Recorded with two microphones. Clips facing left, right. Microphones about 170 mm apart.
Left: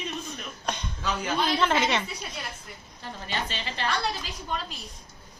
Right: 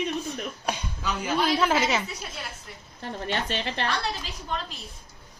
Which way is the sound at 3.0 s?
60° right (ahead or behind).